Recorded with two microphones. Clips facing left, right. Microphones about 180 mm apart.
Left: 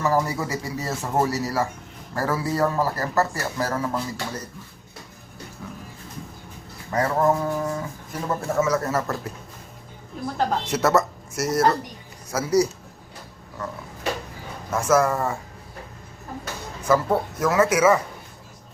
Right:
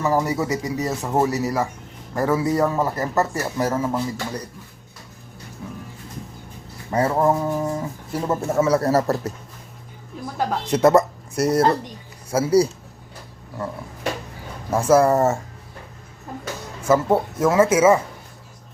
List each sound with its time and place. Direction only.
0.0 s speech: 15° right (ahead or behind)
6.9 s speech: 25° right (ahead or behind)
8.6 s speech: 35° right (ahead or behind)
10.3 s speech: 20° right (ahead or behind)
11.3 s speech: 30° right (ahead or behind)
14.7 s speech: 30° right (ahead or behind)
16.9 s speech: 25° right (ahead or behind)